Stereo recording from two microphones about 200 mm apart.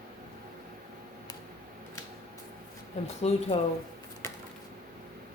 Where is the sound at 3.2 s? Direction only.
30° left (ahead or behind).